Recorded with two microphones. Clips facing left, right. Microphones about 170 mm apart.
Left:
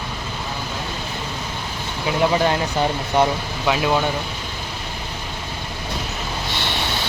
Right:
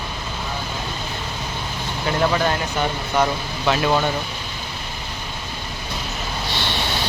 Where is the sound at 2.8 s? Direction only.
25° left (ahead or behind).